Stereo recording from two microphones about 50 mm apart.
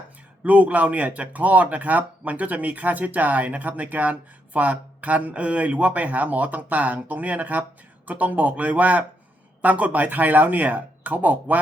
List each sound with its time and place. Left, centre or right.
0.4 s speech: right